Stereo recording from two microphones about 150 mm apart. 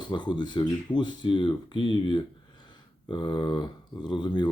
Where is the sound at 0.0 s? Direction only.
30° left (ahead or behind).